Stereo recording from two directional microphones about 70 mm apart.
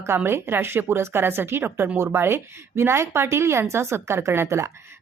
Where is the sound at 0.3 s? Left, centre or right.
Right.